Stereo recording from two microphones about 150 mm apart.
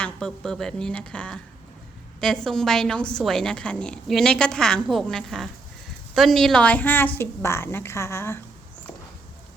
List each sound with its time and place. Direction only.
0.0 s a woman's voice: 5° left (ahead or behind)